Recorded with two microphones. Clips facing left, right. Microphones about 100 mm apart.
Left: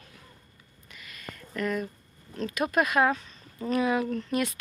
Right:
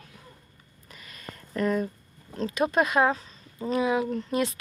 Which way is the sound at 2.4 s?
30° right (ahead or behind).